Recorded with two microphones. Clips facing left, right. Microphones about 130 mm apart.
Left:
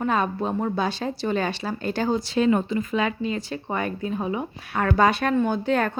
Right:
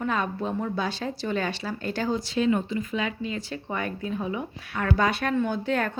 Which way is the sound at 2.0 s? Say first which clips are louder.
Left 3 dB; 50° left (ahead or behind).